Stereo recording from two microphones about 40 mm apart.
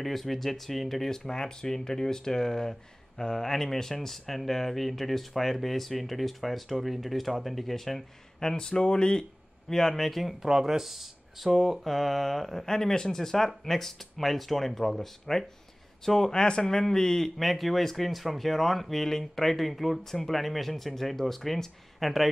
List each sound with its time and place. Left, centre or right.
0.0 s speech: centre
8.4 s speech: centre
10.4 s speech: centre
17.4 s speech: centre